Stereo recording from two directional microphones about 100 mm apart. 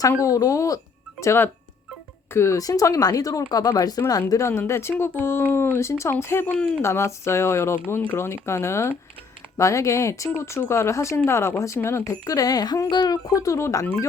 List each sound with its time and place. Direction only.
0.2 s speech: 35° left (ahead or behind)
6.5 s speech: 15° left (ahead or behind)
6.8 s speech: 25° left (ahead or behind); by 13.1 s 45° left (ahead or behind)
13.4 s speech: 30° left (ahead or behind)